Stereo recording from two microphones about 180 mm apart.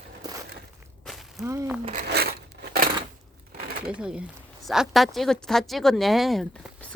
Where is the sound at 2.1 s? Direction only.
65° right (ahead or behind).